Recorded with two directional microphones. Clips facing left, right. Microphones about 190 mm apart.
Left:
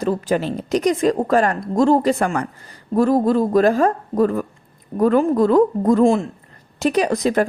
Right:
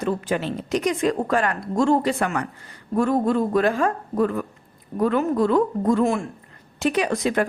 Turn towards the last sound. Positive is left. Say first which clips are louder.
# left 4 dB
turn(degrees=40)  # may be behind; listen again after turning